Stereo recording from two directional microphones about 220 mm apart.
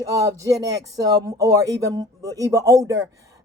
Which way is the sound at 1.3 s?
15° right (ahead or behind).